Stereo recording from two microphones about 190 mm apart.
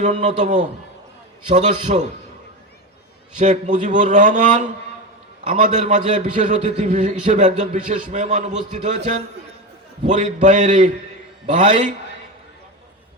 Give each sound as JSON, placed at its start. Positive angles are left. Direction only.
{"t": 0.0, "sound": "a man's voice", "side_deg": -40}
{"t": 3.3, "sound": "a man's voice", "side_deg": -40}